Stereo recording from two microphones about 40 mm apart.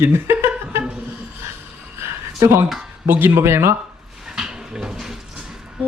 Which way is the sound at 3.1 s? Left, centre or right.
Right.